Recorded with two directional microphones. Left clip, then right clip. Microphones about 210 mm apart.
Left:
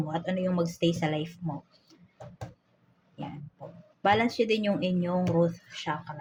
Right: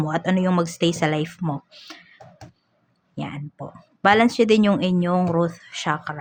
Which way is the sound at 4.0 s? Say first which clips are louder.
Right 8 dB; 35° right (ahead or behind).